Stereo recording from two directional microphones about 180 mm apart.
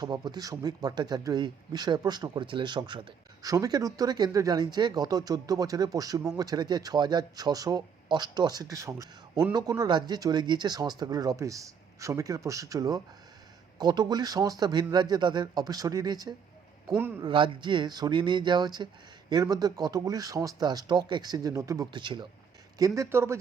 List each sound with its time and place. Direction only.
0.0 s speech: 25° right (ahead or behind)